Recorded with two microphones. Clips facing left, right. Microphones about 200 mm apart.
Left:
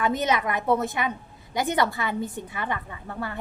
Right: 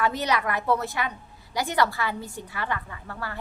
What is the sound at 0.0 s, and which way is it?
A woman's voice, 20° left (ahead or behind).